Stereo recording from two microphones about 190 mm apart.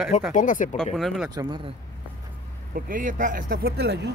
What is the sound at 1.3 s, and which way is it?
Speech, 20° right (ahead or behind).